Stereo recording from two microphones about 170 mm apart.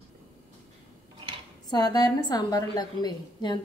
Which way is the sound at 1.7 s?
25° left (ahead or behind).